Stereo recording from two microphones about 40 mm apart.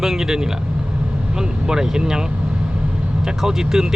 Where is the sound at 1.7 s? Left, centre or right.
Centre.